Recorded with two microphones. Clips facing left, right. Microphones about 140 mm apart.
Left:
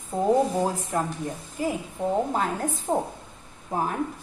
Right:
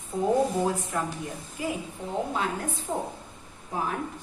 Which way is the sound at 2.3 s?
45° left (ahead or behind).